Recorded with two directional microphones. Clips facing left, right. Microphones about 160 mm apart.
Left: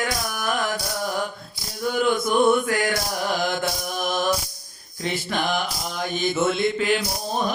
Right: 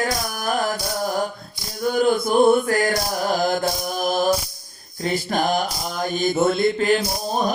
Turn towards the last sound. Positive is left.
turn(degrees=-40)  # may be behind; listen again after turning